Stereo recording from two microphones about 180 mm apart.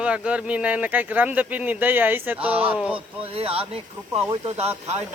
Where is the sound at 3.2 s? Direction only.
30° right (ahead or behind).